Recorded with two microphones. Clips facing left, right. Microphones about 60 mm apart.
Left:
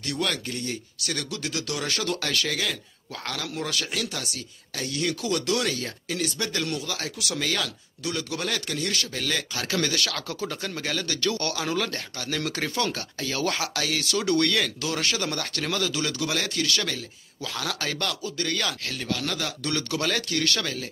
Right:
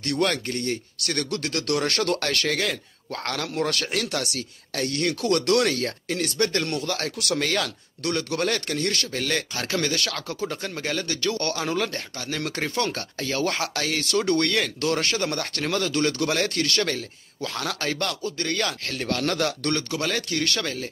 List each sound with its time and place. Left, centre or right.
0.2 s speech: right
11.6 s speech: right
14.8 s speech: right
19.0 s speech: right
19.9 s speech: right